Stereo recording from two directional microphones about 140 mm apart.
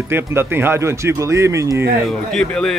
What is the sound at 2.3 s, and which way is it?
Music, 5° left (ahead or behind).